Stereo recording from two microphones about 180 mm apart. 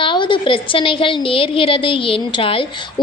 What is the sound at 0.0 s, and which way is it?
A woman's voice, 25° left (ahead or behind).